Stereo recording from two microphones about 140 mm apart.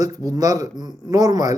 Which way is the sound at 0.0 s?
25° right (ahead or behind).